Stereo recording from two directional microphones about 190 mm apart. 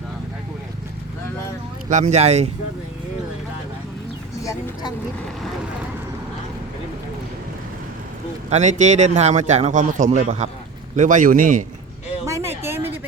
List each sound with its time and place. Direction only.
1.9 s a man's voice: 40° right (ahead or behind)
4.4 s speech: 20° left (ahead or behind)
8.4 s a man's voice: 35° right (ahead or behind)
12.2 s a sound: 15° right (ahead or behind)